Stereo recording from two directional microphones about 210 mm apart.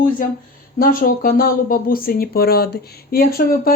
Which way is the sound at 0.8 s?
40° left (ahead or behind).